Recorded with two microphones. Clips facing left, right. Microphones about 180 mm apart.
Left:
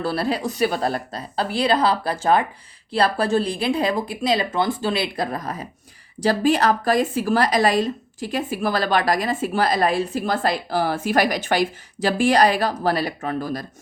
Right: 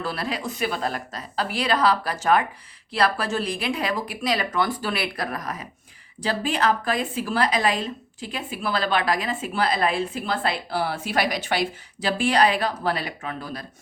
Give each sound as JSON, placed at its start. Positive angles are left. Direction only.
{"t": 0.0, "sound": "a woman's voice", "side_deg": 35}
{"t": 6.2, "sound": "a woman's voice", "side_deg": 40}